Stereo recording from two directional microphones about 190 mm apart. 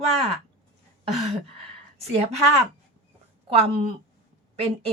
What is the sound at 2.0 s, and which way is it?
Speech, 35° right (ahead or behind).